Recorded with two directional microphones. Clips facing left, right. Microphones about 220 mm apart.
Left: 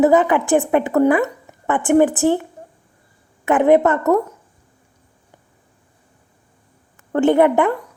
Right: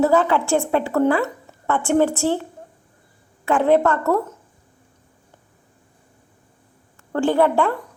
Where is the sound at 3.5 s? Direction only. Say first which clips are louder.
Left 3 dB; 20° left (ahead or behind).